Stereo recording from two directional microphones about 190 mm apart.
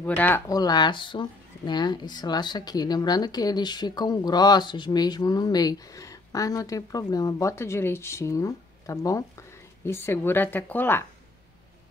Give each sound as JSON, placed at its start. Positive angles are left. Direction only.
{"t": 0.0, "sound": "a woman's voice", "side_deg": 10}